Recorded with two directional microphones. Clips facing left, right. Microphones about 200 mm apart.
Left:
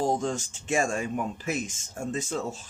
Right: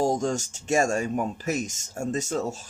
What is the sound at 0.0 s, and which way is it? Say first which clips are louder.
Speech: right 3 dB; 45° right (ahead or behind).